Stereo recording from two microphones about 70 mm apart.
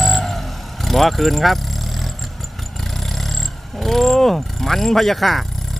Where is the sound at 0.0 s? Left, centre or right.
Centre.